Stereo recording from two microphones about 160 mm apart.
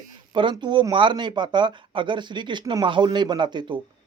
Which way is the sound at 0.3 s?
30° right (ahead or behind).